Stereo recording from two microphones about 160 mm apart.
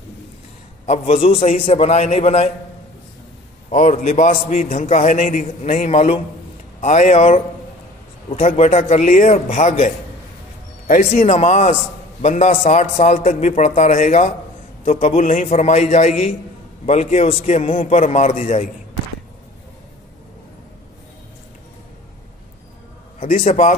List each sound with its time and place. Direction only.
0.8 s a man's voice: 45° left (ahead or behind)
3.7 s a man's voice: 50° left (ahead or behind)
23.1 s a man's voice: 50° left (ahead or behind)